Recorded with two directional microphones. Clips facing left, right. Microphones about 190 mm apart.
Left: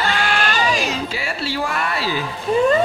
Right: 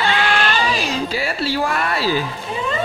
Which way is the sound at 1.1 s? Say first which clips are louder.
Right 4 dB; 40° right (ahead or behind).